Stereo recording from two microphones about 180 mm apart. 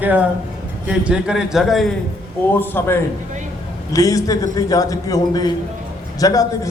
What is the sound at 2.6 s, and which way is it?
A man's voice, 10° left (ahead or behind).